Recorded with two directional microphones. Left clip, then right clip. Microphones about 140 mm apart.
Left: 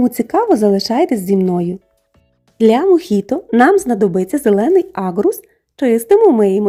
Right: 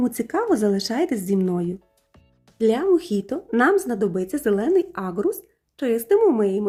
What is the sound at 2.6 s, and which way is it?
A woman's voice, 60° left (ahead or behind).